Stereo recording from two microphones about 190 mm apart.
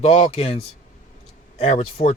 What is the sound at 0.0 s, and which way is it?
Speech, 35° left (ahead or behind).